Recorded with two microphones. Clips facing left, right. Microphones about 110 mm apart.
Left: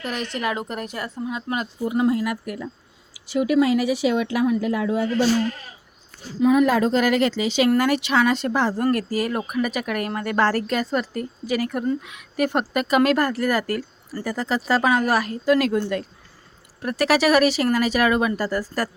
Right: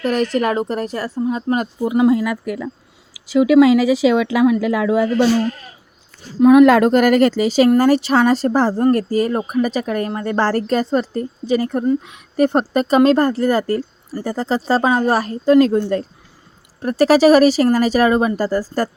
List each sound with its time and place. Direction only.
0.0 s speech: 40° right (ahead or behind)
1.8 s speech: 90° right
6.4 s a woman's voice: 70° right (ahead or behind); by 18.9 s 30° right (ahead or behind)